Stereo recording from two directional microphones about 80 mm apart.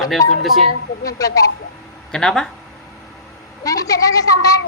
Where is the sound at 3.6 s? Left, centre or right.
Left.